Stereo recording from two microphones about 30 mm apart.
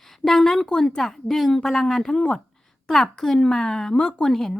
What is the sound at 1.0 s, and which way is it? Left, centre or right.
A woman's voice, centre.